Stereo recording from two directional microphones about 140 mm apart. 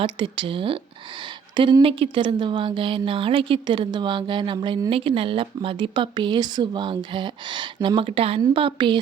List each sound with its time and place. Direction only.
0.0 s a woman's voice: 35° right (ahead or behind)